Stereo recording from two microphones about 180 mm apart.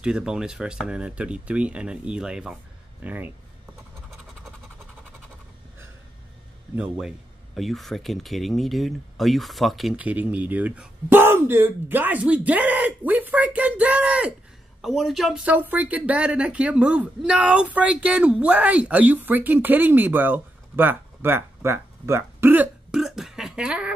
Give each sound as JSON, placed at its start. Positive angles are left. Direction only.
{"t": 0.0, "sound": "speech", "side_deg": -5}
{"t": 6.7, "sound": "speech", "side_deg": -5}